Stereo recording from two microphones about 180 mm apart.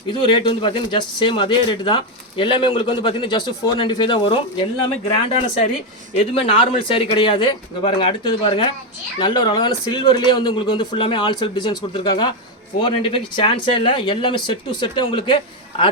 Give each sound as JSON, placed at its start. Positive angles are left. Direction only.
{"t": 0.1, "sound": "a man's voice", "side_deg": 25}